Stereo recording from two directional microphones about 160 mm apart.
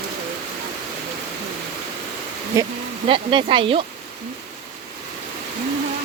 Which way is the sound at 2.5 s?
20° right (ahead or behind).